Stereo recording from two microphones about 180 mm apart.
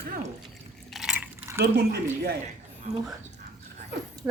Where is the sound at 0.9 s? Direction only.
5° right (ahead or behind).